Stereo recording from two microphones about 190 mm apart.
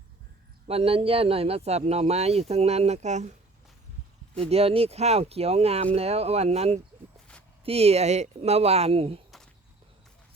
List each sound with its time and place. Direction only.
0.7 s speech: 30° right (ahead or behind)
4.4 s speech: 30° right (ahead or behind)